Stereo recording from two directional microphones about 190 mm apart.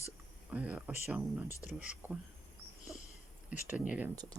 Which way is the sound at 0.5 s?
5° right (ahead or behind).